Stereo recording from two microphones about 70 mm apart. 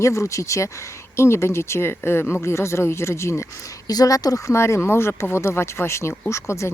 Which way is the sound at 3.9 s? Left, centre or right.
Left.